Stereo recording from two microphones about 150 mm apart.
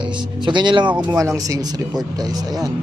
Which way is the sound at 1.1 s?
20° right (ahead or behind).